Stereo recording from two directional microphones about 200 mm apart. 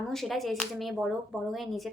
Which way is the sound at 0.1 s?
Centre (ahead or behind).